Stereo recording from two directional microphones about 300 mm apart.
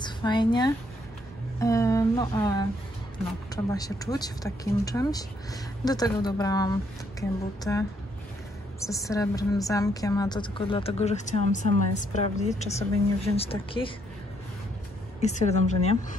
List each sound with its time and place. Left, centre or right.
0.0 s a woman's voice: centre
15.2 s a woman's voice: left